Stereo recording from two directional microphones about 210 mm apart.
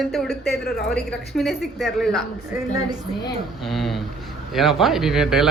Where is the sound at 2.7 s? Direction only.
20° right (ahead or behind).